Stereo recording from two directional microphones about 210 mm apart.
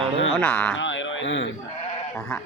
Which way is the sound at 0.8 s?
60° left (ahead or behind).